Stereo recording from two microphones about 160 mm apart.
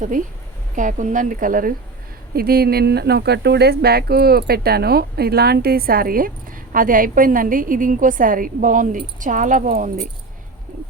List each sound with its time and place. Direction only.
0.8 s a woman's voice: 55° right (ahead or behind)
2.3 s a woman's voice: 70° right (ahead or behind); by 10.1 s 55° right (ahead or behind)